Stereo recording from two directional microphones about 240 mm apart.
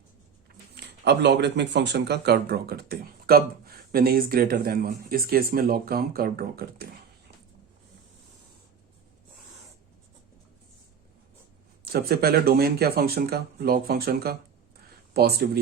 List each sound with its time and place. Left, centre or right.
1.0 s speech: right
11.9 s speech: right